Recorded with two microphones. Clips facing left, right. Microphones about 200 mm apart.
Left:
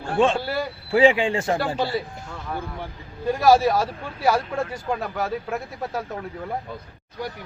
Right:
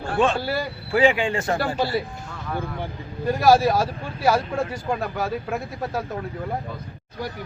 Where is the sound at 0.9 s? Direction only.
30° left (ahead or behind).